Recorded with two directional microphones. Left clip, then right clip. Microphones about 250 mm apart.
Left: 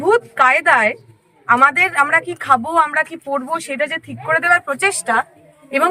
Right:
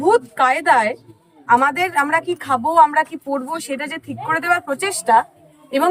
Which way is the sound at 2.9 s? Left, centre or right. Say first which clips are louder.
Right 1 dB; centre.